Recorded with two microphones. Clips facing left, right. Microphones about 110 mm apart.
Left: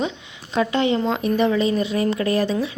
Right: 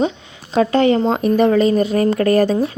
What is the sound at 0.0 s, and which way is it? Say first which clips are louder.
Speech: right 6 dB; 40° right (ahead or behind).